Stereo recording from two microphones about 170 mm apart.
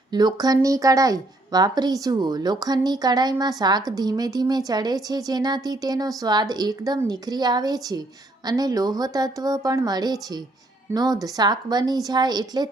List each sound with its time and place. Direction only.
0.1 s a woman's voice: 25° right (ahead or behind)